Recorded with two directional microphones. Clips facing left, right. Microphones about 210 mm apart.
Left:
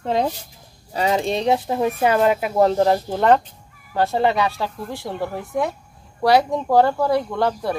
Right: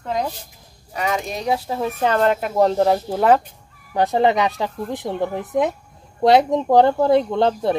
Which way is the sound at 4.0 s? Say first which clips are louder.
Right 2 dB; 15° right (ahead or behind).